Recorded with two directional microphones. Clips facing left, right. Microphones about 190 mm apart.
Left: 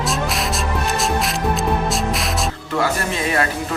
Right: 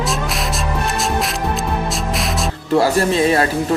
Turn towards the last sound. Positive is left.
turn(degrees=-30)  # may be behind; listen again after turning